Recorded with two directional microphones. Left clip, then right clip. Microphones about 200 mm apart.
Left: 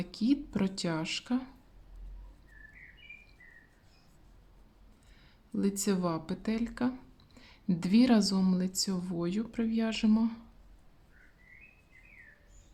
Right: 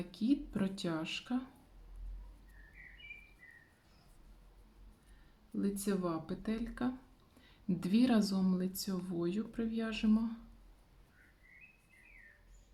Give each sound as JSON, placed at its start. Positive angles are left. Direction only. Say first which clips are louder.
{"t": 0.0, "sound": "speech", "louder": "left 4 dB", "side_deg": 30}
{"t": 5.5, "sound": "speech", "louder": "left 5 dB", "side_deg": 35}